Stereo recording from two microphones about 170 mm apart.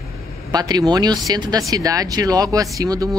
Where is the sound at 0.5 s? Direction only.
25° right (ahead or behind).